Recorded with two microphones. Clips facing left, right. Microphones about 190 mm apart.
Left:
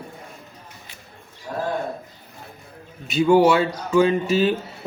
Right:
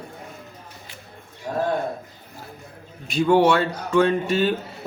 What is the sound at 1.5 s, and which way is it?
Speech, 45° right (ahead or behind).